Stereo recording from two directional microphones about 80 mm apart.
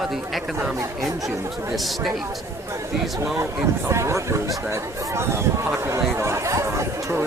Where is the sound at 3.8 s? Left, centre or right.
Right.